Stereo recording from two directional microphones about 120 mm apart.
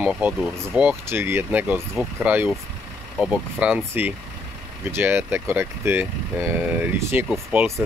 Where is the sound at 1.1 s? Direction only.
20° right (ahead or behind).